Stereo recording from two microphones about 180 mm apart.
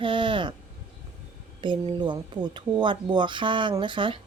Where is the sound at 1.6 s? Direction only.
25° right (ahead or behind).